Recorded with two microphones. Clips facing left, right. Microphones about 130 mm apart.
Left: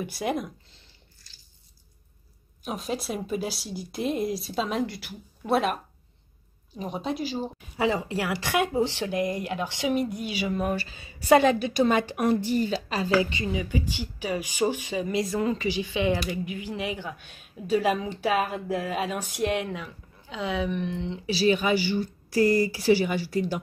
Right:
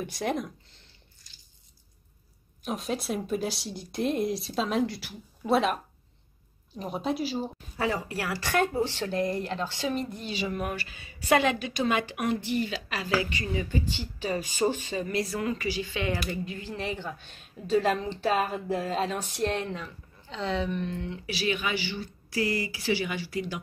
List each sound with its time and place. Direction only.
0.0 s speech: 5° left (ahead or behind)
2.6 s speech: centre (ahead or behind)
6.8 s speech: centre (ahead or behind)
7.7 s speech: 15° left (ahead or behind)
10.5 s a woman's voice: 30° left (ahead or behind)